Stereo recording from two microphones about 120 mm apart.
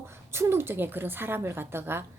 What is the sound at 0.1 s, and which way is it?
A woman's voice, 20° right (ahead or behind).